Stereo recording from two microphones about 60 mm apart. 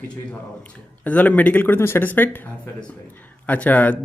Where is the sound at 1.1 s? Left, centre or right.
Left.